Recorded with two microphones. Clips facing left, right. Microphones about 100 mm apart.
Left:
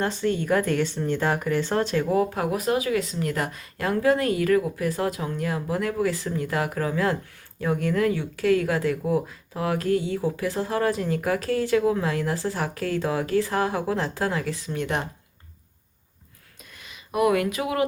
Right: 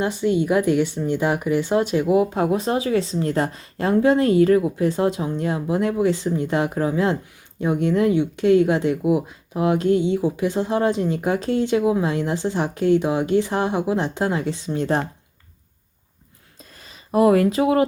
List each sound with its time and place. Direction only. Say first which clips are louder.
0.0 s speech: right 4 dB; 15° right (ahead or behind); by 15.0 s 30° right (ahead or behind)
16.7 s speech: right 6 dB; 35° right (ahead or behind)